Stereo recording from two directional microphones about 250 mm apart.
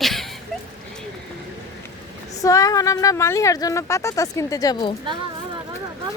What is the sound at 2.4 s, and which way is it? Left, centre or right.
Speech, centre.